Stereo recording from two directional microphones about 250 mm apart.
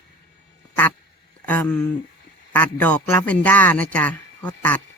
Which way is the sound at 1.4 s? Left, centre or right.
Centre.